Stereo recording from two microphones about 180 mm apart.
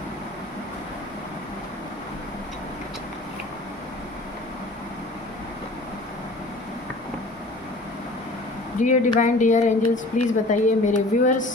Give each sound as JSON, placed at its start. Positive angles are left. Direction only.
{"t": 8.8, "sound": "a woman's voice", "side_deg": 45}